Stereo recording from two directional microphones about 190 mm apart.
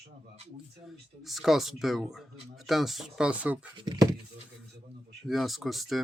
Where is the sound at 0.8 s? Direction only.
Centre (ahead or behind).